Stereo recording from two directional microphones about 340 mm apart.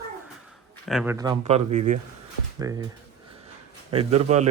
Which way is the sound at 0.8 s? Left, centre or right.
Centre.